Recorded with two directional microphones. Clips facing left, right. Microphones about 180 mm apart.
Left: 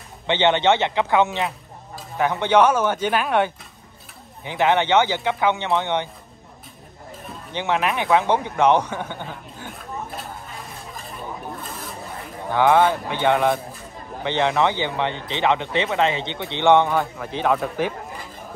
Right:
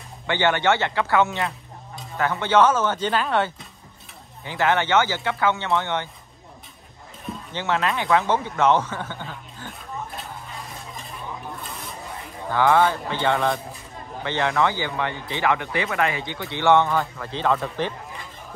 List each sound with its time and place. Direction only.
0.3 s speech: 20° left (ahead or behind)
7.5 s speech: 15° left (ahead or behind)
12.4 s speech: 15° left (ahead or behind)